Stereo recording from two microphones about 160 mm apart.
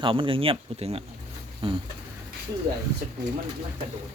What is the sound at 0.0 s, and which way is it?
Speech, 35° right (ahead or behind).